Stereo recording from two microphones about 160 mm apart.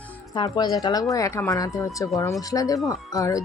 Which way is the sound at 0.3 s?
25° left (ahead or behind).